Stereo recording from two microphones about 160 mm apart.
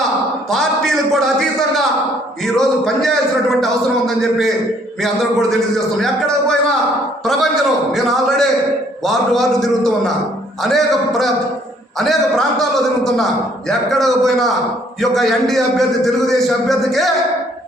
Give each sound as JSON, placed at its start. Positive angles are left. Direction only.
{"t": 0.5, "sound": "a man's voice", "side_deg": 0}